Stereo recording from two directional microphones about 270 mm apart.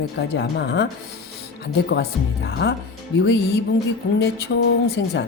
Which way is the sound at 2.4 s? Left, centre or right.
Left.